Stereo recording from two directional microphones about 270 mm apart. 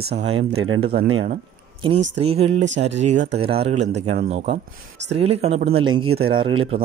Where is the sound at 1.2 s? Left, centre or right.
Right.